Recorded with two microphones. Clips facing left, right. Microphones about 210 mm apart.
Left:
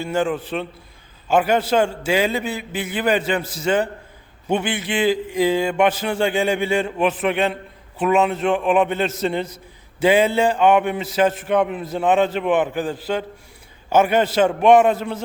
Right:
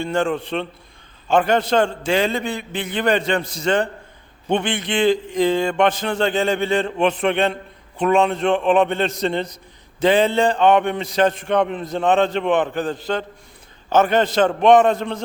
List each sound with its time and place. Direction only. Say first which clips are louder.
0.0 s a man's voice: right 1 dB; 5° left (ahead or behind)